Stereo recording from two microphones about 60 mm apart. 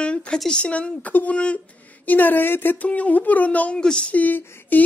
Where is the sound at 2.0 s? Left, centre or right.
Left.